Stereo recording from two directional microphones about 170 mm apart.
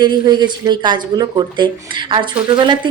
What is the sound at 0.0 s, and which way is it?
A woman's voice, 25° right (ahead or behind).